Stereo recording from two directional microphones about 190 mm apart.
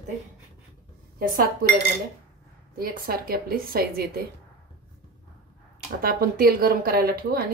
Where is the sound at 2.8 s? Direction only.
50° right (ahead or behind).